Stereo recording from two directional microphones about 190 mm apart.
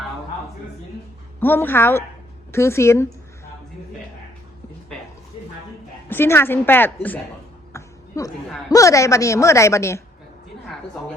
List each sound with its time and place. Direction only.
1.4 s a woman's voice: 10° left (ahead or behind)
6.1 s a woman's voice: 10° left (ahead or behind)
7.7 s a sound: 15° left (ahead or behind)
8.7 s a woman's voice: 15° left (ahead or behind)